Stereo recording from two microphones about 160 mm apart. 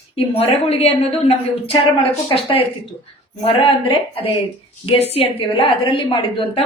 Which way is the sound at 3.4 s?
35° left (ahead or behind).